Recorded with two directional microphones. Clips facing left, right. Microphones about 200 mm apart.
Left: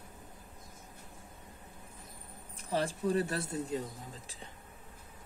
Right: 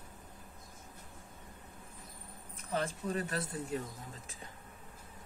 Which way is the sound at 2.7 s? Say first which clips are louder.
Left 4 dB; 30° left (ahead or behind).